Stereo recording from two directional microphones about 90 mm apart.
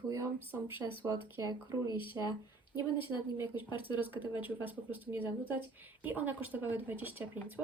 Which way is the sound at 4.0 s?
20° right (ahead or behind).